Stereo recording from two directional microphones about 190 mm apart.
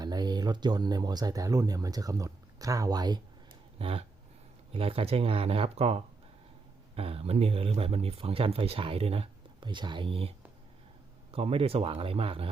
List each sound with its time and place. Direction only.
0.0 s speech: 20° right (ahead or behind)